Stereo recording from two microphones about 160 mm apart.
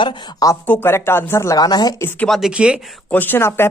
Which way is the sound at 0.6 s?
15° left (ahead or behind).